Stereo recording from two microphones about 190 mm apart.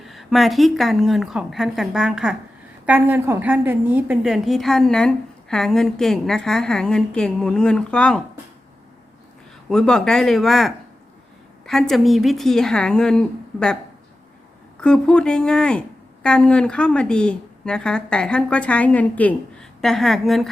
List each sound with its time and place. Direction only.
0.0 s a woman's voice: centre (ahead or behind)
9.6 s a woman's voice: centre (ahead or behind)
14.8 s a woman's voice: 5° left (ahead or behind)